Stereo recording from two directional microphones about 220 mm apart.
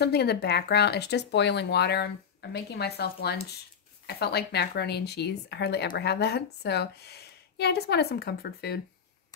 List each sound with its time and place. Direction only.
0.0 s speech: 50° left (ahead or behind)